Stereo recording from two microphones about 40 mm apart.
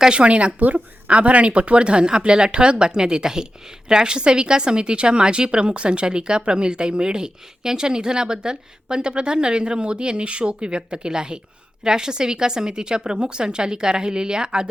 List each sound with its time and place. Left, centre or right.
0.1 s a woman's voice: right